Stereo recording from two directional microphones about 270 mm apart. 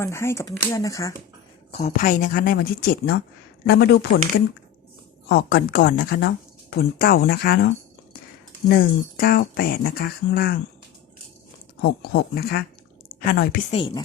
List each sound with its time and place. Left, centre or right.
0.0 s speech: centre
1.7 s speech: left
5.3 s speech: left
8.7 s speech: left
11.8 s speech: left
13.7 s speech: centre